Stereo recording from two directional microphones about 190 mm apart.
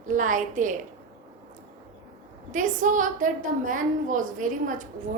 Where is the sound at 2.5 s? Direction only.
40° right (ahead or behind).